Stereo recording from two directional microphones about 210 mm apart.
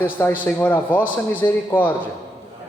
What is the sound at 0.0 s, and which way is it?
A man's voice, 10° left (ahead or behind).